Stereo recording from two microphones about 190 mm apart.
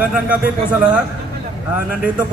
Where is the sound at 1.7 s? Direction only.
5° right (ahead or behind).